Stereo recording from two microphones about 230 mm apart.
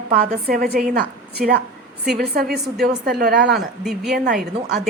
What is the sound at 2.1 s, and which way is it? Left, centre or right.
A woman's voice, right.